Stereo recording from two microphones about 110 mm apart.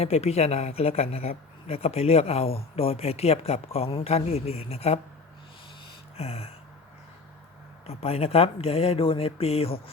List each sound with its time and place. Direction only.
0.0 s speech: 75° left (ahead or behind)
6.1 s speech: 70° left (ahead or behind)
7.9 s speech: 65° left (ahead or behind)